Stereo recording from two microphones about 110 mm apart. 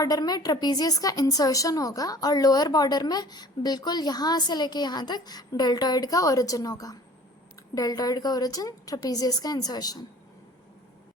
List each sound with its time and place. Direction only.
0.0 s a woman's voice: 35° left (ahead or behind)